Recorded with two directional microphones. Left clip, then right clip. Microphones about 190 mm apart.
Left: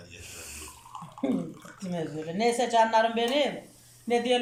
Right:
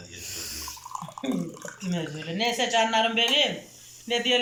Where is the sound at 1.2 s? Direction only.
35° right (ahead or behind).